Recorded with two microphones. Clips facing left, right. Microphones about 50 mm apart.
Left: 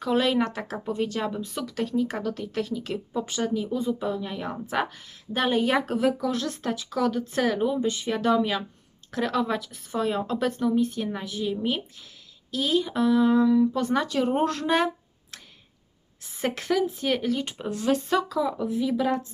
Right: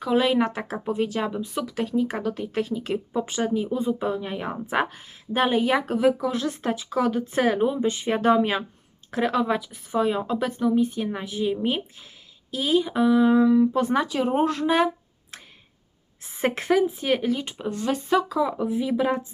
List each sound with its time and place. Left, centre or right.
0.0 s speech: centre
5.5 s speech: centre; by 8.6 s right
9.0 s speech: right
12.5 s speech: centre
16.2 s speech: right
17.4 s speech: centre
18.3 s speech: right